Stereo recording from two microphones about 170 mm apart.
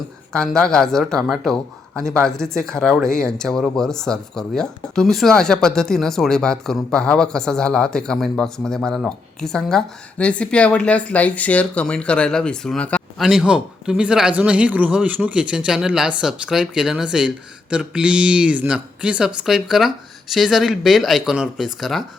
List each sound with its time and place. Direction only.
0.3 s speech: 5° left (ahead or behind)